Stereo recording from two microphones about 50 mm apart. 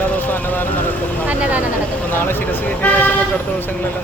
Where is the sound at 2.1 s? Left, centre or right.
Left.